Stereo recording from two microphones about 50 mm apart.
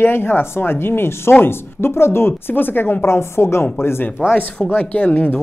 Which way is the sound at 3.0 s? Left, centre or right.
Left.